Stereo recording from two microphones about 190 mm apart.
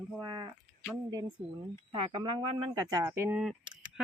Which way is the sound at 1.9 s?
25° right (ahead or behind).